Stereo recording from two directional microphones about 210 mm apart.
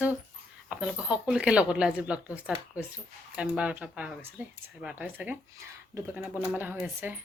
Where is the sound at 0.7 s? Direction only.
5° right (ahead or behind).